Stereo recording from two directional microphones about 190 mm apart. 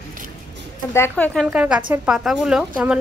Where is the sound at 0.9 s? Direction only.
10° left (ahead or behind).